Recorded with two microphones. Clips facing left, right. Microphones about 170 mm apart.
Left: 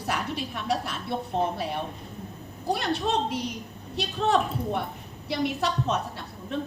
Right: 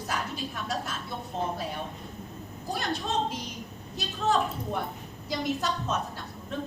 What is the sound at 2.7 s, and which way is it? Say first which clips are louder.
A woman's voice: left 5 dB; 65° left (ahead or behind).